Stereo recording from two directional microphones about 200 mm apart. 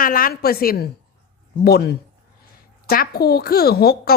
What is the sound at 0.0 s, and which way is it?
Speech, 45° left (ahead or behind).